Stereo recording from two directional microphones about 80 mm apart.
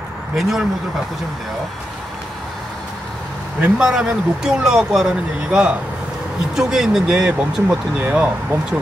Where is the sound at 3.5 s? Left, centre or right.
Centre.